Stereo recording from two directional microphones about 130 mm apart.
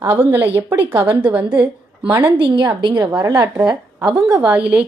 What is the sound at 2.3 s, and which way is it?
A woman's voice, 40° right (ahead or behind).